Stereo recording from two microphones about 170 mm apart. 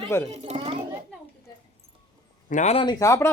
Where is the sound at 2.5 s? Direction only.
40° left (ahead or behind).